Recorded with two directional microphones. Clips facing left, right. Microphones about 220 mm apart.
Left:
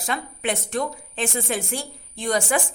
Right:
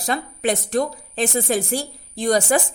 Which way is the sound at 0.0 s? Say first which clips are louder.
Right 5 dB; 35° right (ahead or behind).